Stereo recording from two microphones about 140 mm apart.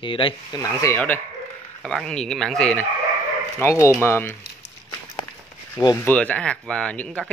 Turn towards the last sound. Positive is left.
turn(degrees=10)  # may be behind; listen again after turning